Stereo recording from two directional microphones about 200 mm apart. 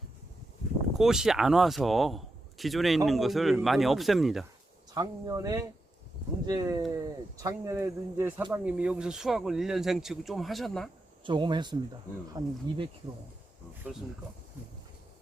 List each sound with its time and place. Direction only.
0.9 s speech: centre (ahead or behind)
4.9 s speech: 20° right (ahead or behind); by 10.8 s centre (ahead or behind)
11.2 s speech: 25° right (ahead or behind)